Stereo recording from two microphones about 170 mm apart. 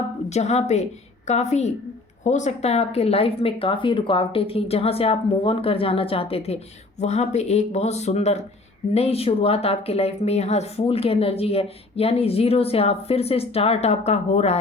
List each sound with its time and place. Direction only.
0.3 s speech: 40° left (ahead or behind)